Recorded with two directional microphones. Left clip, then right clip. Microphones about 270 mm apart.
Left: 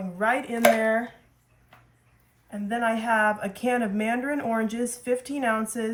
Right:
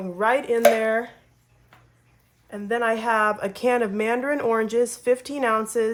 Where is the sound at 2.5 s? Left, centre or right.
Right.